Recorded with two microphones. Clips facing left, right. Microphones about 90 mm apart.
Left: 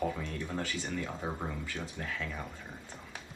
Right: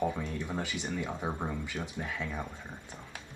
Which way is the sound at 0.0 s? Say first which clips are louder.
Right 2 dB; 15° right (ahead or behind).